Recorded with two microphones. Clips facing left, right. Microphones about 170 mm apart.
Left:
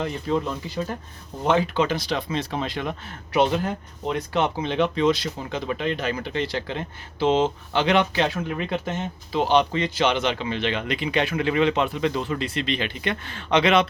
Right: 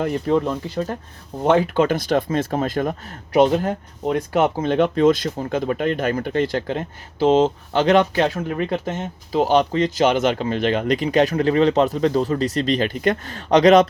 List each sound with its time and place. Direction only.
0.0 s speech: 60° right (ahead or behind); by 13.8 s 40° right (ahead or behind)